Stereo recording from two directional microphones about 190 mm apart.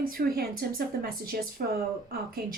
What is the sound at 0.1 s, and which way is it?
A woman's voice, 50° right (ahead or behind).